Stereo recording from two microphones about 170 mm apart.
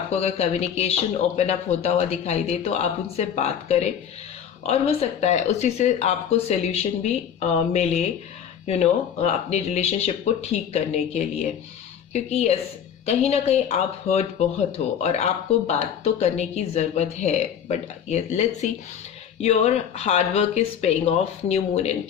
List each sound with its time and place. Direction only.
0.1 s speech: 40° left (ahead or behind)